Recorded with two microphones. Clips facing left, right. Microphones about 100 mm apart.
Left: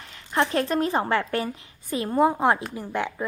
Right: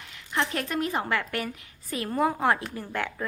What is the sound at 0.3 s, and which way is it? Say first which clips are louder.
Speech: left 5 dB; 30° left (ahead or behind).